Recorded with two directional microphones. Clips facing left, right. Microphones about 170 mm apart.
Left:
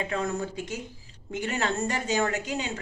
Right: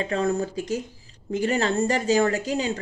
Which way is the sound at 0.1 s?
35° right (ahead or behind).